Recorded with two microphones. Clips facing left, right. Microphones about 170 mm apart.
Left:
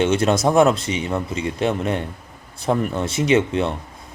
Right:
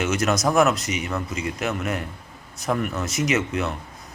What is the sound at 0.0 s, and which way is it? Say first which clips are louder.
A man's voice: left 5 dB; 30° left (ahead or behind).